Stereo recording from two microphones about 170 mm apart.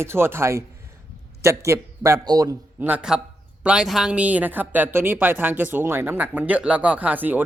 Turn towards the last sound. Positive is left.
turn(degrees=-10)  # may be behind; listen again after turning